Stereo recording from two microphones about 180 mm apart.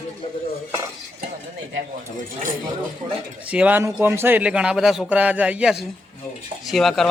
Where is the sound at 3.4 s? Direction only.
5° right (ahead or behind).